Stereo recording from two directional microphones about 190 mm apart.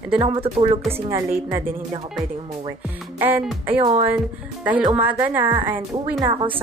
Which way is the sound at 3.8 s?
30° right (ahead or behind).